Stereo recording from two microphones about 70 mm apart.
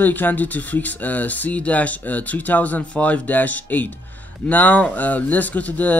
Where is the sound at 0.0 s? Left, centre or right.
Left.